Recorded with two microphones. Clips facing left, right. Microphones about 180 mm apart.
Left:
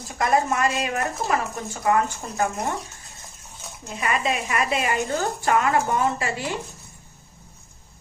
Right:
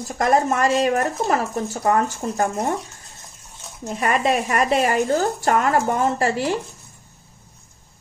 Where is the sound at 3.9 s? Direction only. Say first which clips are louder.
Right 5 dB; 45° right (ahead or behind).